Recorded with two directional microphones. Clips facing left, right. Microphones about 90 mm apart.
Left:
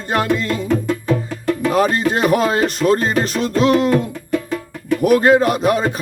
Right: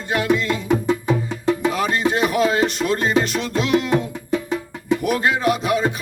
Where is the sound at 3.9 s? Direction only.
20° right (ahead or behind).